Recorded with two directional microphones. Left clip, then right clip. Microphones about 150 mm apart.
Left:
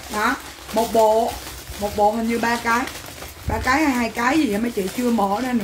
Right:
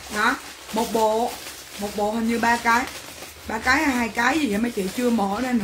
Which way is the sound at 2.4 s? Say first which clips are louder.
Right 2 dB; 20° right (ahead or behind).